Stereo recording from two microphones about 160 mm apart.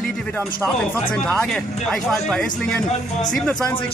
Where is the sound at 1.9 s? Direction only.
5° left (ahead or behind).